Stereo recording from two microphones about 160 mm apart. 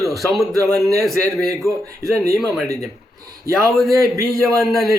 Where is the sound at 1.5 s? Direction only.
20° right (ahead or behind).